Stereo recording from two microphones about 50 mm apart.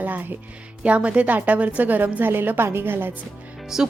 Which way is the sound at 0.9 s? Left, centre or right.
Right.